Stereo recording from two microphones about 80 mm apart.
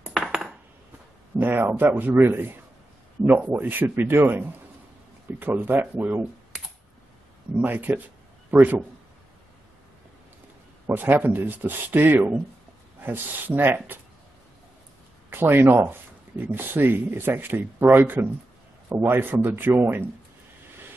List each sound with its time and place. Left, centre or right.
0.0 s cutlery: centre
1.4 s speech: right
7.5 s speech: right
10.9 s speech: right
15.2 s speech: right